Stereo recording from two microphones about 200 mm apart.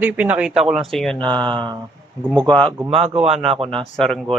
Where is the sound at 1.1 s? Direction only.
25° right (ahead or behind).